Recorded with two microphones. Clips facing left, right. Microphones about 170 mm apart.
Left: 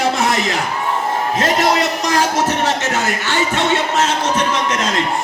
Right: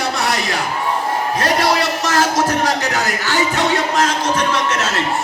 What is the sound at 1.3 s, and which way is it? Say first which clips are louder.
Music: left 1 dB; 20° left (ahead or behind).